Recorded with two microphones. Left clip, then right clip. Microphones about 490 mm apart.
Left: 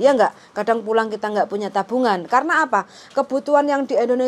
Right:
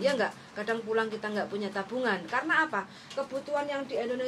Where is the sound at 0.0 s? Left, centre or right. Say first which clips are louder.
Left 13 dB; left.